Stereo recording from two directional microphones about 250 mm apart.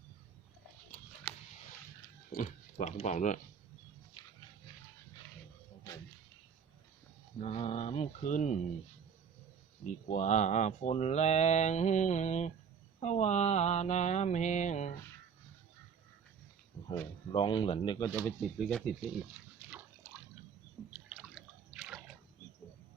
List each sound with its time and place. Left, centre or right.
2.3 s speech: left
7.3 s speech: left
9.8 s speech: left
17.3 s speech: left
18.3 s speech: centre
20.9 s drip: centre